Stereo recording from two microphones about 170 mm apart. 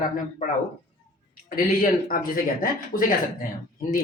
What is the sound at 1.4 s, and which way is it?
Speech, 55° left (ahead or behind).